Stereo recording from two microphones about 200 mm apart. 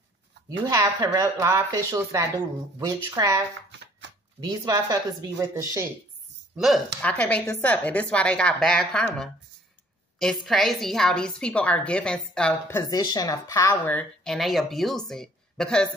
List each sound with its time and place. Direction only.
0.5 s speech: 20° right (ahead or behind)
4.4 s speech: 20° right (ahead or behind)
6.5 s a woman's voice: centre (ahead or behind)
10.4 s a woman's voice: centre (ahead or behind)